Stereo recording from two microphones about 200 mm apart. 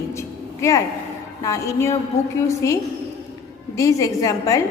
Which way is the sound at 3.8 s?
15° left (ahead or behind).